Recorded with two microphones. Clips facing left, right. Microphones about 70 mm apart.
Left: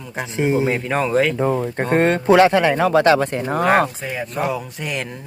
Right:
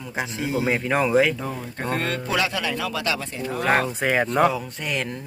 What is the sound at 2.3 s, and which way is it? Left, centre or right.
Speech, left.